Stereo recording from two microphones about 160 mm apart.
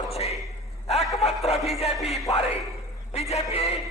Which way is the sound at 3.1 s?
40° left (ahead or behind).